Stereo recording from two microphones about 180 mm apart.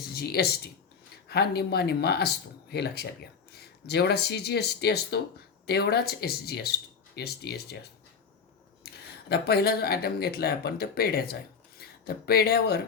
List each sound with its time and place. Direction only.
0.1 s speech: 60° left (ahead or behind)
8.8 s a sound: 60° left (ahead or behind)
9.3 s speech: 60° left (ahead or behind)